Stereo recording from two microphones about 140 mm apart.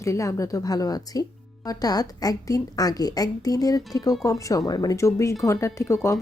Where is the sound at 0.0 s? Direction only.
20° left (ahead or behind).